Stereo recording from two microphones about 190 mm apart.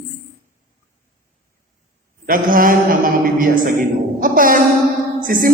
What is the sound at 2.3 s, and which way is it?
Speech, 45° right (ahead or behind).